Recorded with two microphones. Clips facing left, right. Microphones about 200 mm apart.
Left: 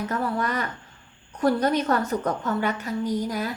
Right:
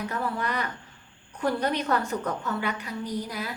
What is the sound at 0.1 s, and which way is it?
A woman's voice, 40° left (ahead or behind).